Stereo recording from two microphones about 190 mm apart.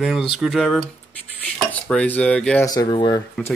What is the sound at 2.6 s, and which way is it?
Speech, 20° left (ahead or behind).